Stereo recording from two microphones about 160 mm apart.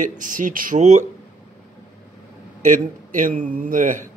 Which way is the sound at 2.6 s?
55° right (ahead or behind).